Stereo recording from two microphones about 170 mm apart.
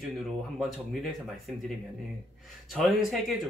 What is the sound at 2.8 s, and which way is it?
Speech, centre (ahead or behind).